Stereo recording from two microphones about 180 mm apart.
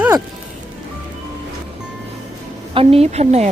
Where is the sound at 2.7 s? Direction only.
30° right (ahead or behind).